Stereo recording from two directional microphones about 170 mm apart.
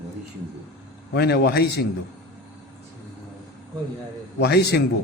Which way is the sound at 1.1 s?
75° left (ahead or behind).